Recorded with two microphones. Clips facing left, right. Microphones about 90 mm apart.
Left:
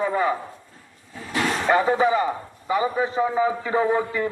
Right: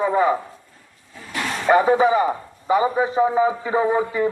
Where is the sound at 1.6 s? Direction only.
20° right (ahead or behind).